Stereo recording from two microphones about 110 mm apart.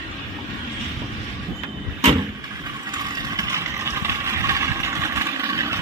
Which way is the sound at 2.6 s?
35° right (ahead or behind).